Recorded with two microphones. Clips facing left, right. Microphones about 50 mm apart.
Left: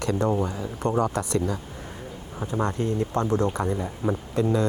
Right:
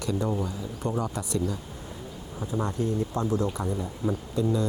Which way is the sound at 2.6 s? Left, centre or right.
Left.